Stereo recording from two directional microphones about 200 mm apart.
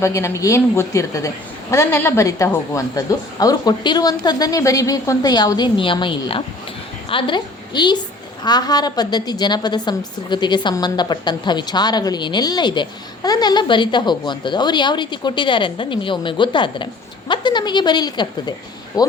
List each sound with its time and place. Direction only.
0.0 s a woman's voice: 15° left (ahead or behind)